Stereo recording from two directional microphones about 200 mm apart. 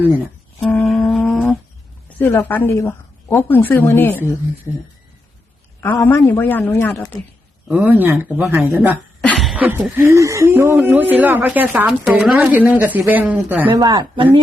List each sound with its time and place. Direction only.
0.6 s a sound: 5° left (ahead or behind)
2.1 s a woman's voice: 10° left (ahead or behind)
6.0 s a woman's voice: 10° left (ahead or behind)
7.7 s speech: 10° right (ahead or behind)
9.2 s speech: 5° left (ahead or behind)
13.7 s speech: 20° right (ahead or behind)